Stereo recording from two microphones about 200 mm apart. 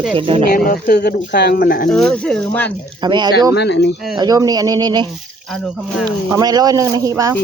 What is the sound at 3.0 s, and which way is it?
Speech, 20° right (ahead or behind).